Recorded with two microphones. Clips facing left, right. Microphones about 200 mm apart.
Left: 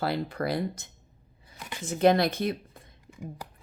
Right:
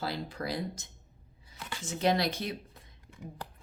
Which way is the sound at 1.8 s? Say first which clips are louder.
Left 6 dB; 55° left (ahead or behind).